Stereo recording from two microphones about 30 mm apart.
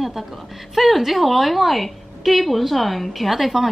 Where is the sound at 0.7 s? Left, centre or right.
Centre.